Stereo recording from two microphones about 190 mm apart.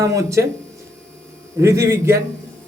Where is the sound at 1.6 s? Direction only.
15° right (ahead or behind).